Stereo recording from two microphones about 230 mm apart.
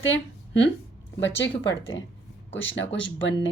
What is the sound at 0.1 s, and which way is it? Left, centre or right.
Speech, left.